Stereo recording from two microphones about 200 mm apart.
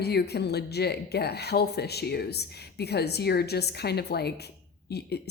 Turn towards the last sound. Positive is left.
turn(degrees=55)  # may be behind; listen again after turning